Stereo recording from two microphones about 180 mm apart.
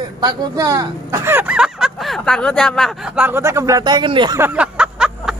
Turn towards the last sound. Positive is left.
turn(degrees=-5)  # may be behind; listen again after turning